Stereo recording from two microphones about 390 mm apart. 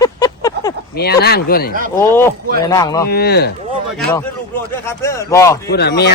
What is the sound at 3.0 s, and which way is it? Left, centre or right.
Speech, left.